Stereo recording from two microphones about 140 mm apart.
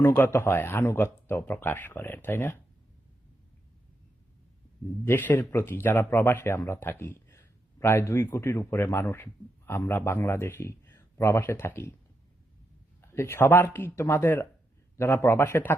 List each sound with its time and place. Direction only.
0.0 s speech: 15° left (ahead or behind)
5.0 s speech: 15° left (ahead or behind)
13.0 s speech: 20° left (ahead or behind)